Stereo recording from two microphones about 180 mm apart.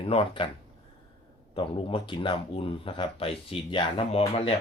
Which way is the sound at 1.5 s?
30° left (ahead or behind).